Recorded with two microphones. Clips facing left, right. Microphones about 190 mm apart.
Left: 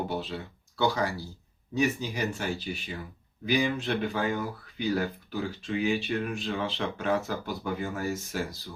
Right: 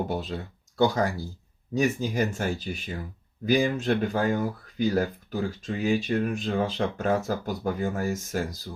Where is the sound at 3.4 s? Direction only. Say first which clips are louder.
Right 4 dB; 45° right (ahead or behind).